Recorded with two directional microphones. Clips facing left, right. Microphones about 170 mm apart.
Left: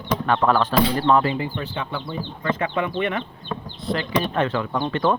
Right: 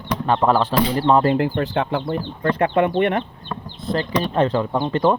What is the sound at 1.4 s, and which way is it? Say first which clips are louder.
Speech: right 7 dB; 80° right.